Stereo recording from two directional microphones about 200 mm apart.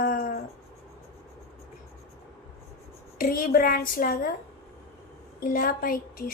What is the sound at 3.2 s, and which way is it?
A woman's voice, 45° left (ahead or behind).